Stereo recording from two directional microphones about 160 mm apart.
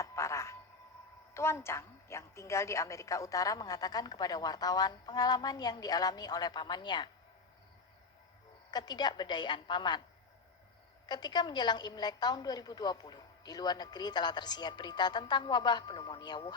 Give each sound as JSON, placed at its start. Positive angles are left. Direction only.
{"t": 0.0, "sound": "music", "side_deg": 20}
{"t": 1.3, "sound": "a woman's voice", "side_deg": 15}
{"t": 8.7, "sound": "a woman's voice", "side_deg": 25}
{"t": 11.0, "sound": "a woman's voice", "side_deg": 25}